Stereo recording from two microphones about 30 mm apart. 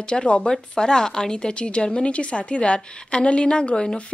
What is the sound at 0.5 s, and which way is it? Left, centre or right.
A woman's voice, left.